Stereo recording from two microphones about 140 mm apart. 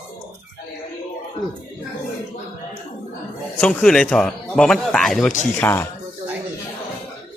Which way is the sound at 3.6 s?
5° left (ahead or behind).